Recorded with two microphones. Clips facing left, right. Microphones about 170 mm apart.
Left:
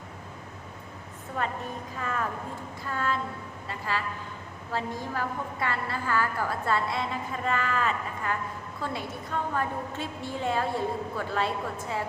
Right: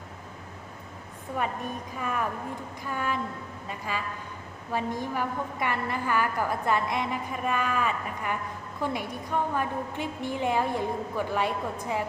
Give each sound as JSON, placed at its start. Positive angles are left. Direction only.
{"t": 2.0, "sound": "a woman's voice", "side_deg": -15}